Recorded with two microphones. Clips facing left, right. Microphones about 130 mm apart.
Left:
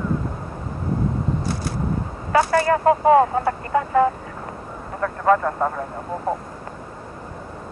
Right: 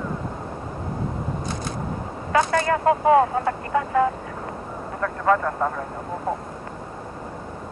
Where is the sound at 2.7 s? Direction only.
35° left (ahead or behind).